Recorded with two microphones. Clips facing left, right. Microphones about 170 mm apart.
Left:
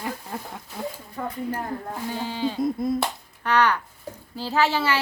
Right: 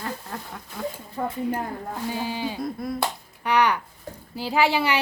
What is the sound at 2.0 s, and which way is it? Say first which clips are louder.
Speech: left 1 dB; 10° right (ahead or behind).